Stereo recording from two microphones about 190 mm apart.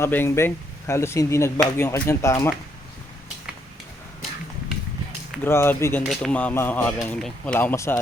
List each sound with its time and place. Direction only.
0.0 s speech: 10° left (ahead or behind)
5.4 s speech: 10° left (ahead or behind)